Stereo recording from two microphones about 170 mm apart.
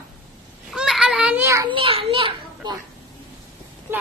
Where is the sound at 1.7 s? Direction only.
30° right (ahead or behind).